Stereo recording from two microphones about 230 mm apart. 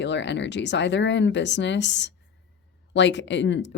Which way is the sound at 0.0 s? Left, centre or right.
Left.